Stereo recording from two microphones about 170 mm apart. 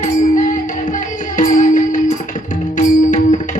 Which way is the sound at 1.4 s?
50° left (ahead or behind).